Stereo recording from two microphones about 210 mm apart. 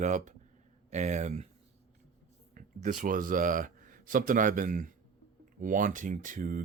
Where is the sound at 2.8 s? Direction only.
40° right (ahead or behind).